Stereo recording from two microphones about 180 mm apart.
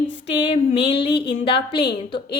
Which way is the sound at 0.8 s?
70° left (ahead or behind).